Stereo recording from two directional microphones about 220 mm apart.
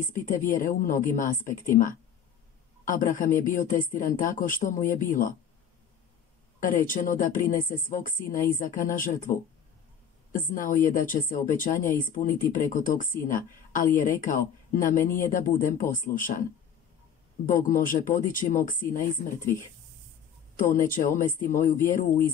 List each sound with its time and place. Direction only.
0.1 s a woman's voice: 35° left (ahead or behind)
6.6 s speech: 40° left (ahead or behind)
14.2 s speech: 35° left (ahead or behind)
17.5 s speech: 40° left (ahead or behind)
20.5 s speech: 35° left (ahead or behind)